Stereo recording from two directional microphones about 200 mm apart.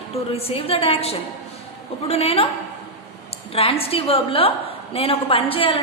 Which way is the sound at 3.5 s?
30° left (ahead or behind).